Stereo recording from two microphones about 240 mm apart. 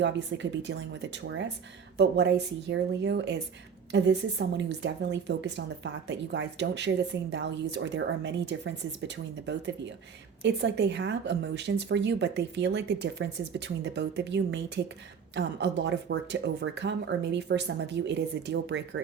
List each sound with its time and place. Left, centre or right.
0.0 s speech: right